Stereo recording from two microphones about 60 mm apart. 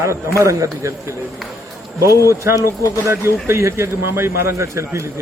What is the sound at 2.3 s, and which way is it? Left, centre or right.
A man's voice, right.